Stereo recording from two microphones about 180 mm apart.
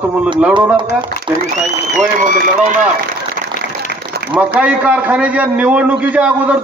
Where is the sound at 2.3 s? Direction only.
50° right (ahead or behind).